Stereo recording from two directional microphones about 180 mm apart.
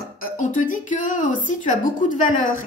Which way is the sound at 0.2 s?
45° left (ahead or behind).